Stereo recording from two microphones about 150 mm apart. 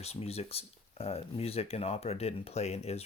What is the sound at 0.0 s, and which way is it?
Speech, 45° left (ahead or behind).